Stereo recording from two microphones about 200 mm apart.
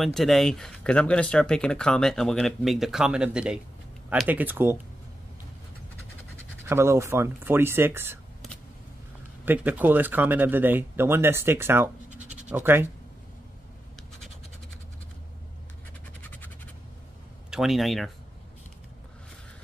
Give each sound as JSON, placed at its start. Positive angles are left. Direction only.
{"t": 0.0, "sound": "speech", "side_deg": 0}
{"t": 6.6, "sound": "speech", "side_deg": -15}
{"t": 9.4, "sound": "speech", "side_deg": -10}
{"t": 12.1, "sound": "scratch", "side_deg": -35}
{"t": 12.4, "sound": "speech", "side_deg": -10}
{"t": 16.2, "sound": "scratch", "side_deg": 10}
{"t": 17.5, "sound": "speech", "side_deg": 0}